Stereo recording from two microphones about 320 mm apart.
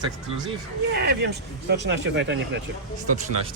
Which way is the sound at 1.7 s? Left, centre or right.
Right.